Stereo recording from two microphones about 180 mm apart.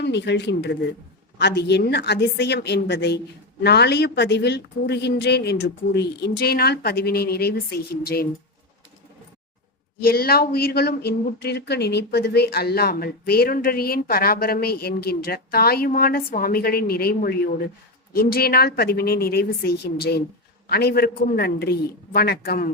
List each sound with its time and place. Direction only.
0.0 s a woman's voice: 75° left (ahead or behind); by 8.3 s 60° left (ahead or behind)
10.0 s speech: 60° left (ahead or behind)